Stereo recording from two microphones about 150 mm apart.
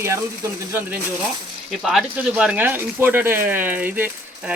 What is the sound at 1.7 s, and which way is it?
Speech, centre (ahead or behind).